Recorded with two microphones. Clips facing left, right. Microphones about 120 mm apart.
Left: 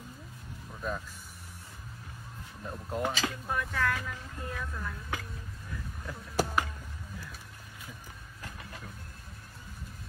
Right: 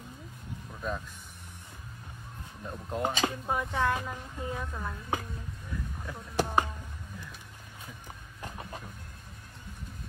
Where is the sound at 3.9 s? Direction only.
20° right (ahead or behind).